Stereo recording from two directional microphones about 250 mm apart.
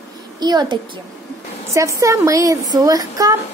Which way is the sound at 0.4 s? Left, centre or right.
Centre.